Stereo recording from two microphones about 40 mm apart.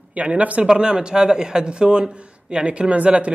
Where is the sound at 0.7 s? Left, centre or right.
Right.